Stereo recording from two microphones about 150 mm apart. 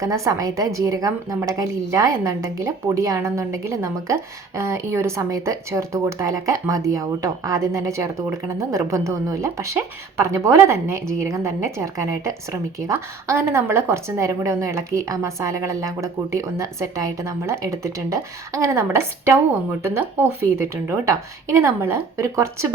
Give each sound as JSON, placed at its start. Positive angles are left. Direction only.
{"t": 0.0, "sound": "speech", "side_deg": -20}